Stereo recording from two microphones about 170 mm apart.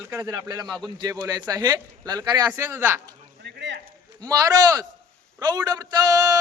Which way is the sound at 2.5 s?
10° right (ahead or behind).